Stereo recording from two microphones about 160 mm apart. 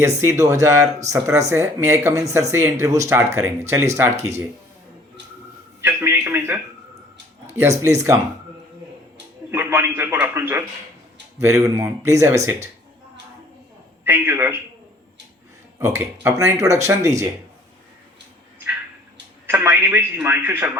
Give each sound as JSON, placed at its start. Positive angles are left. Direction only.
{"t": 0.2, "sound": "speech", "side_deg": -20}
{"t": 5.8, "sound": "a man's voice", "side_deg": -15}
{"t": 9.5, "sound": "speech", "side_deg": -15}
{"t": 14.0, "sound": "speech", "side_deg": -15}
{"t": 15.8, "sound": "speech", "side_deg": -20}
{"t": 19.5, "sound": "speech", "side_deg": -10}